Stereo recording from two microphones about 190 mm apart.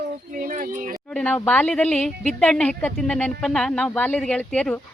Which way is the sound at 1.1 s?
5° left (ahead or behind).